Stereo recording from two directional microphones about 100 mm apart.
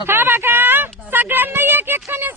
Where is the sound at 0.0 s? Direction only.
20° right (ahead or behind).